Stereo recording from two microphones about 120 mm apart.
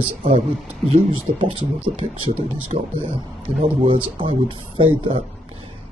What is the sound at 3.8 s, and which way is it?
Speech, 45° right (ahead or behind).